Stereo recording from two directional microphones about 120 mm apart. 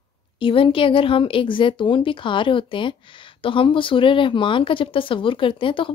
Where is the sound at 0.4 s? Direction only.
45° left (ahead or behind).